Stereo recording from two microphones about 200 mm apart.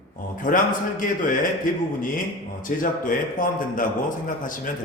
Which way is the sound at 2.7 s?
45° left (ahead or behind).